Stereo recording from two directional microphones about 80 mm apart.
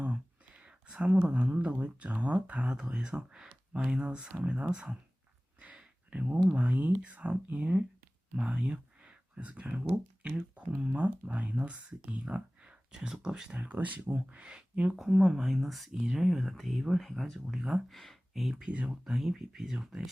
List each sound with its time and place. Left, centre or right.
0.0 s speech: centre
5.5 s a sound: centre
6.5 s speech: centre
13.6 s speech: right; by 20.0 s centre